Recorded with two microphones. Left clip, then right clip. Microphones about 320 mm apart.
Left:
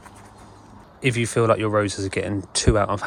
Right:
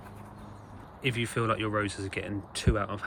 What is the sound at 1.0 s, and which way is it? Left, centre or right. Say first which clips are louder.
Speech: left 10 dB; centre.